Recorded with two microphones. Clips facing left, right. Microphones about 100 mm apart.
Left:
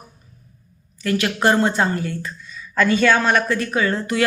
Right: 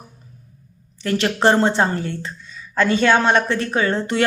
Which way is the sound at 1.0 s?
30° right (ahead or behind).